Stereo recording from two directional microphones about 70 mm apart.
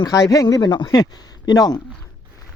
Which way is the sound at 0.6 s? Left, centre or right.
Left.